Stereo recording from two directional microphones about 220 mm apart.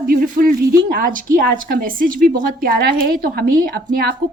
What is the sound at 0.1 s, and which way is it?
A woman's voice, 40° right (ahead or behind).